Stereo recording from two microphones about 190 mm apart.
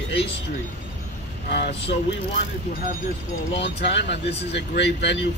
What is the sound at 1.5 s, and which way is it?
Speech, 60° left (ahead or behind).